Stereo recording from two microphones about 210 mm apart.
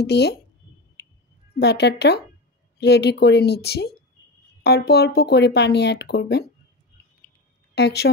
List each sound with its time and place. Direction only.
0.0 s speech: 50° left (ahead or behind)
1.0 s a sound: 50° left (ahead or behind)
1.6 s speech: 50° left (ahead or behind)
7.7 s a woman's voice: 50° left (ahead or behind)